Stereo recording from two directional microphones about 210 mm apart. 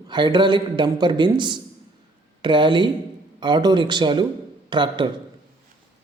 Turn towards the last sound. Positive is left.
turn(degrees=-20)  # may be behind; listen again after turning